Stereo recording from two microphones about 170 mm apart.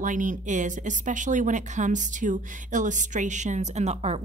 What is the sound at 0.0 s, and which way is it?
A woman's voice, 50° right (ahead or behind).